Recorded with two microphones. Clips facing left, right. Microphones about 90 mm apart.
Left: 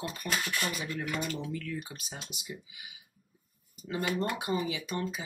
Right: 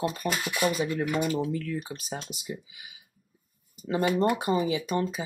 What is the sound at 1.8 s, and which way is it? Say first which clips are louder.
Speech: right 8 dB; 35° right (ahead or behind).